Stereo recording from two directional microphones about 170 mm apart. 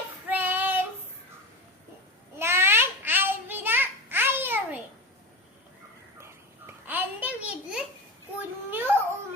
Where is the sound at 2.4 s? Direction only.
15° right (ahead or behind).